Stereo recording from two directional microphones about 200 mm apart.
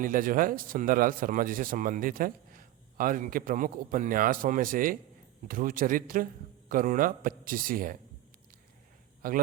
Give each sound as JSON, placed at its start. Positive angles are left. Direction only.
{"t": 0.0, "sound": "a man's voice", "side_deg": -45}